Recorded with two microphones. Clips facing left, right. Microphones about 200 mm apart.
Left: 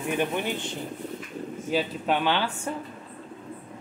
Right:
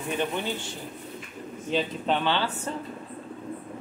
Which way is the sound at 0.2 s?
15° left (ahead or behind).